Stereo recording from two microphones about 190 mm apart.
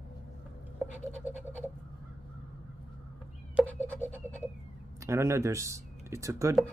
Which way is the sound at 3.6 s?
10° left (ahead or behind).